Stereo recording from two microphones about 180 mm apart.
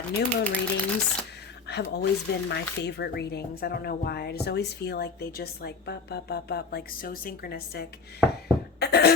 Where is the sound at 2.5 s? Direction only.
70° left (ahead or behind).